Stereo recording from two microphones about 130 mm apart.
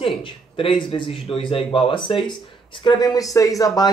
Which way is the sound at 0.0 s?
40° left (ahead or behind).